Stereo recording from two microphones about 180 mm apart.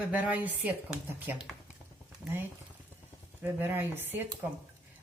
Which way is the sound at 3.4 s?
10° right (ahead or behind).